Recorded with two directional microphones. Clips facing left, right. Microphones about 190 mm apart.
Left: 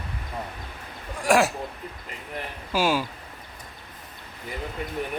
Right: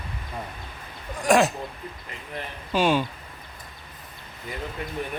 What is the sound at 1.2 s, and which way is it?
Speech, 5° left (ahead or behind).